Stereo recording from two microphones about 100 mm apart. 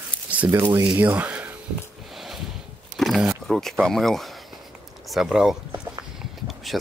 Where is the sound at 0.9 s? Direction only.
20° right (ahead or behind).